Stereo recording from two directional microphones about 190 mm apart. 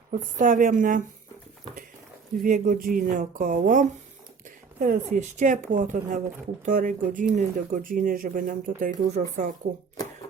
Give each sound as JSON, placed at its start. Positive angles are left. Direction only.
{"t": 0.1, "sound": "speech", "side_deg": -40}
{"t": 2.4, "sound": "speech", "side_deg": -45}